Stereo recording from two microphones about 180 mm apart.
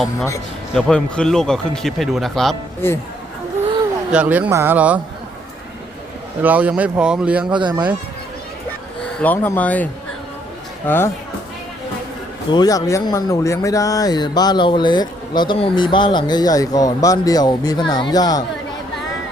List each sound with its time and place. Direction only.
0.7 s speech: 5° left (ahead or behind)
4.1 s speech: 5° right (ahead or behind)
6.4 s speech: 10° right (ahead or behind)
7.5 s speech: 25° right (ahead or behind)
9.2 s speech: 10° left (ahead or behind)
12.5 s speech: 20° left (ahead or behind)